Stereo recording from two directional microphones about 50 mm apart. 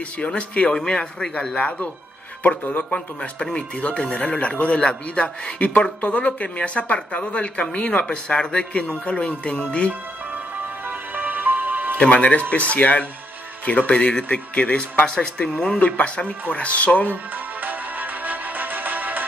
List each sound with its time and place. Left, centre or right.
0.2 s speech: left
2.9 s speech: left
10.9 s music: right
12.0 s speech: left
17.6 s music: right